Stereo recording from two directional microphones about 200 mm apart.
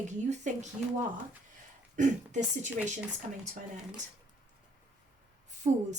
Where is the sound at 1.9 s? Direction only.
40° right (ahead or behind).